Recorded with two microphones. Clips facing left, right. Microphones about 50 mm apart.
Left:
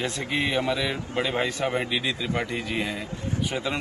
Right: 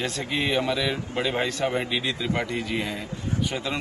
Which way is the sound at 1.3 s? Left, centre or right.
Centre.